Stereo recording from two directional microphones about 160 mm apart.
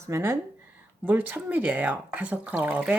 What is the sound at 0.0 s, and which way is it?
Speech, 15° right (ahead or behind).